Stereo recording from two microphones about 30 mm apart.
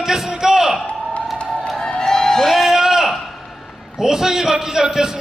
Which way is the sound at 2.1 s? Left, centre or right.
Centre.